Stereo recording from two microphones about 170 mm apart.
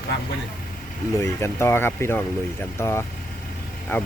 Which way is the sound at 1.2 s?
15° left (ahead or behind).